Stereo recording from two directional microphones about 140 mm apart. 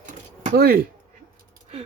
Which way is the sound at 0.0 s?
75° right (ahead or behind).